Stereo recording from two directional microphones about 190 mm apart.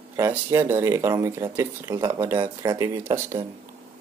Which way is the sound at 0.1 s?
15° right (ahead or behind).